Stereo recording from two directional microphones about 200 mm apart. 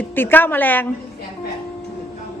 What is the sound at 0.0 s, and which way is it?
Speech, 10° left (ahead or behind).